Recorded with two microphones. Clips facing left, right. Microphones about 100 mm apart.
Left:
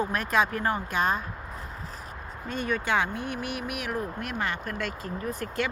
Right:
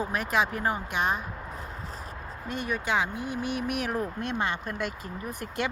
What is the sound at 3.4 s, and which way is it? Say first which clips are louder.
Speech: right 3 dB; 30° right (ahead or behind).